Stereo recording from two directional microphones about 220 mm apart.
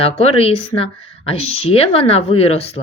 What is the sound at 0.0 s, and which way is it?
Speech, 25° left (ahead or behind).